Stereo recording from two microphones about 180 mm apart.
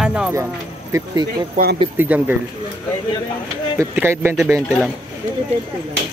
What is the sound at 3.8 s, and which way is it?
Speech, 15° right (ahead or behind).